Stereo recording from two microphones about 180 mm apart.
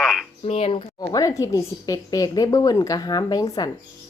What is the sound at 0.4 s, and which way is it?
A woman's voice, 35° left (ahead or behind).